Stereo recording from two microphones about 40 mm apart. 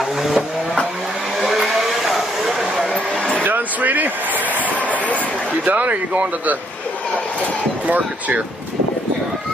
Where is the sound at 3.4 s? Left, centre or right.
Right.